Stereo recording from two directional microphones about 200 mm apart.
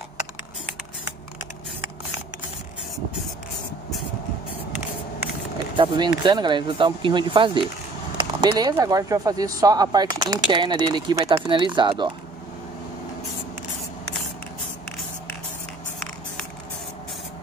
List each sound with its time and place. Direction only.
5.8 s speech: 25° right (ahead or behind)